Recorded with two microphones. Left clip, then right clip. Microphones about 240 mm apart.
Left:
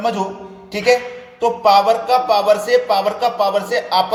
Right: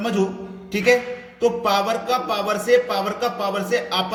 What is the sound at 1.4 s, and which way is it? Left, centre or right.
Speech, centre.